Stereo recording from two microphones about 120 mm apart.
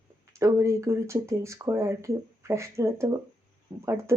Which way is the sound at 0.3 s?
25° right (ahead or behind).